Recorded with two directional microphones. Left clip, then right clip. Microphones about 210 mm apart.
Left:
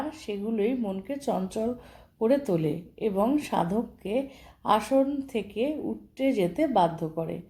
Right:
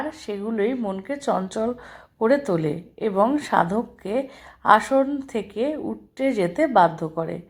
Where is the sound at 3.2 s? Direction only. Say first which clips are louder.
Right 7 dB; 5° right (ahead or behind).